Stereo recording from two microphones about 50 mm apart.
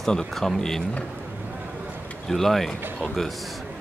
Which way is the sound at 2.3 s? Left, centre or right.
Centre.